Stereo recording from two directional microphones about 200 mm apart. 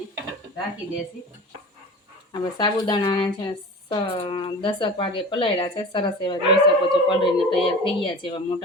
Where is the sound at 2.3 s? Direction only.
20° left (ahead or behind).